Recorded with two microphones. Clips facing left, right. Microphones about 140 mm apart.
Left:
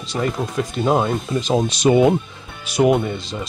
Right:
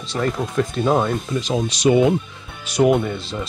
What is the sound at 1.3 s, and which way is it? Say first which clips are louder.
Speech: left 5 dB; 40° left (ahead or behind).